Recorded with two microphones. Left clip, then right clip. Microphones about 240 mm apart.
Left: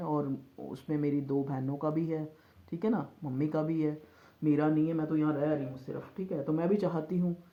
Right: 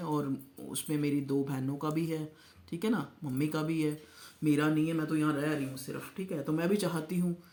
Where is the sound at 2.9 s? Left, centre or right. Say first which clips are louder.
Even; right.